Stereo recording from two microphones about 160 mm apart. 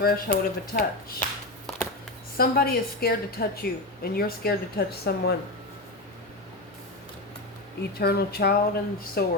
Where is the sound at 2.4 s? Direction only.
70° left (ahead or behind).